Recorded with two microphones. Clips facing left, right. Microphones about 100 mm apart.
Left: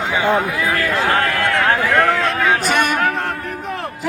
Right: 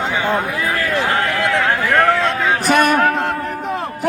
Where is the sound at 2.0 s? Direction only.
20° right (ahead or behind).